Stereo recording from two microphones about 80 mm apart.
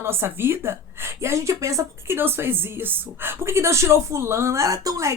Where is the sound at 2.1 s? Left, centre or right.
Right.